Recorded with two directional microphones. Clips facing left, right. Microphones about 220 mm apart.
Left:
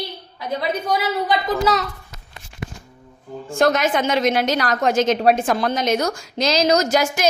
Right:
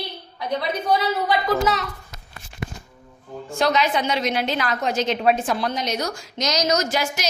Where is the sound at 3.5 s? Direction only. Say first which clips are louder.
Left 3 dB; 50° left (ahead or behind).